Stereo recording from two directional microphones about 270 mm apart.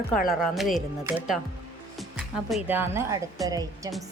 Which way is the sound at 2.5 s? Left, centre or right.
Centre.